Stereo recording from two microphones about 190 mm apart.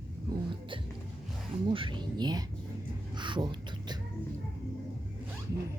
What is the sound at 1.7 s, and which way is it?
Speech, 25° right (ahead or behind).